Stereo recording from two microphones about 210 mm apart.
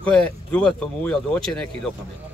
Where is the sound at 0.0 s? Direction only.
5° left (ahead or behind).